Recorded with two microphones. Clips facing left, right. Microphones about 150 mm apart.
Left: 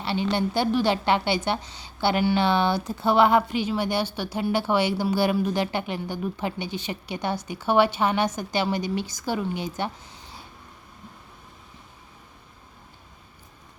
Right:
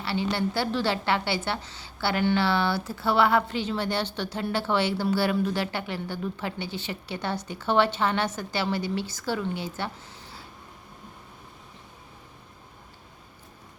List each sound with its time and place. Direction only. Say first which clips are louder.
0.0 s a woman's voice: left 2 dB; 20° left (ahead or behind)